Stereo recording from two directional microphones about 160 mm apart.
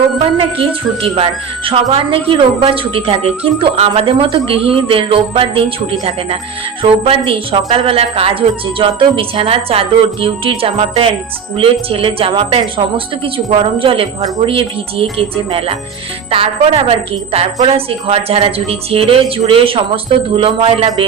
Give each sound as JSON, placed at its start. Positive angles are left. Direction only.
{"t": 0.3, "sound": "a woman's voice", "side_deg": -35}